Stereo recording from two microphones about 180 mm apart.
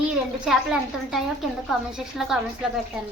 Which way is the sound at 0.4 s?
5° right (ahead or behind).